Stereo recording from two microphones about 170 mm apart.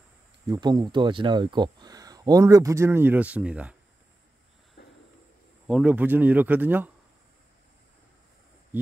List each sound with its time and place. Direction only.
0.5 s speech: 25° right (ahead or behind); by 3.7 s 5° right (ahead or behind)
4.8 s a sound: 70° left (ahead or behind)
5.7 s speech: 5° right (ahead or behind)